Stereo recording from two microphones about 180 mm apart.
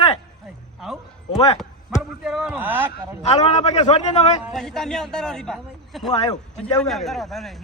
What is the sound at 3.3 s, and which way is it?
A man's voice, 35° left (ahead or behind).